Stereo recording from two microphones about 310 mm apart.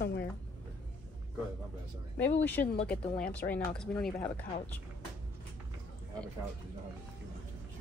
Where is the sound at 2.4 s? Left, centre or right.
Centre.